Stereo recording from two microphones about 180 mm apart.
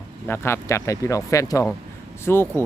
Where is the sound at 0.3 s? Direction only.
15° left (ahead or behind).